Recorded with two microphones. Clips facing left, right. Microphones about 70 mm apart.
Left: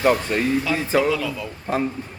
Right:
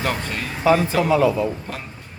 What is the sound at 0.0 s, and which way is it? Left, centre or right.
Speech, left.